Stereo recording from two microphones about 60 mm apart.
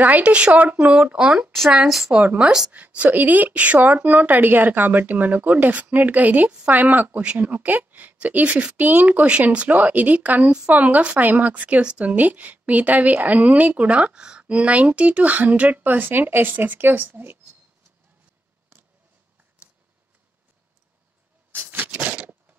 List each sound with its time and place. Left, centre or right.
0.0 s a woman's voice: right
0.9 s a woman's voice: centre
3.0 s a woman's voice: right
21.5 s vehicle: right
22.0 s a sound: right